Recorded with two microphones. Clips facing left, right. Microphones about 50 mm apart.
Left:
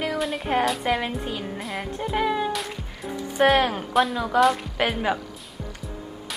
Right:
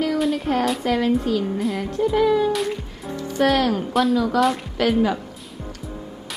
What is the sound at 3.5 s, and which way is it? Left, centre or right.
Speech, left.